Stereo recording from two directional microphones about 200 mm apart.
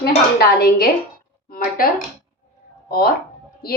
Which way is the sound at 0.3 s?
50° left (ahead or behind).